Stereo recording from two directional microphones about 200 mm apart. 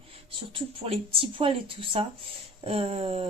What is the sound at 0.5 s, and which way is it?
Speech, 25° right (ahead or behind).